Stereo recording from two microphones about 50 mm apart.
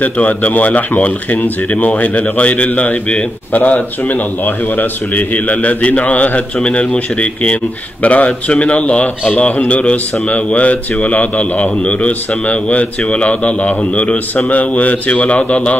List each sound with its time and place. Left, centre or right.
0.0 s speech: left